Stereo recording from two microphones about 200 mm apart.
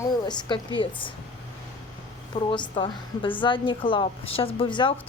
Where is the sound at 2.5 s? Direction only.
25° left (ahead or behind).